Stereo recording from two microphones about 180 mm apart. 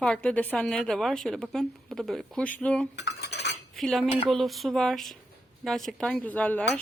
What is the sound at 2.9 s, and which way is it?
Cutlery, 70° left (ahead or behind).